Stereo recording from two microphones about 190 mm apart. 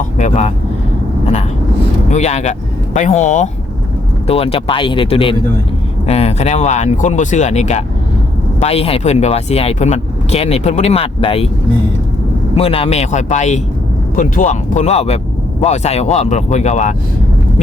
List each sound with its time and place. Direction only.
0.2 s speech: 35° left (ahead or behind)
2.0 s speech: 35° left (ahead or behind)
12.5 s speech: 30° left (ahead or behind)